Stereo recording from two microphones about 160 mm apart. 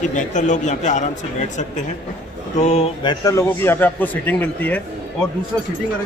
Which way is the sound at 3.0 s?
30° left (ahead or behind).